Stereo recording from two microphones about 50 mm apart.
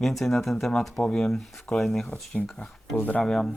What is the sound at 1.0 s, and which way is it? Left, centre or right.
Speech, centre.